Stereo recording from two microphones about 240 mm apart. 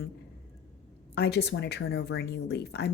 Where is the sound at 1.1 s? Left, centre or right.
Left.